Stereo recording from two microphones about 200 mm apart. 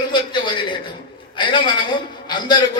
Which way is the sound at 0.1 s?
25° left (ahead or behind).